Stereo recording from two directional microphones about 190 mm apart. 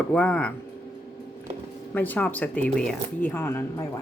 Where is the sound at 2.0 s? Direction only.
10° left (ahead or behind).